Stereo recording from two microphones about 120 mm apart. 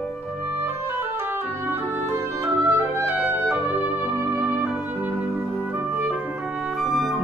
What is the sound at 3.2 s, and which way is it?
Music, 20° right (ahead or behind).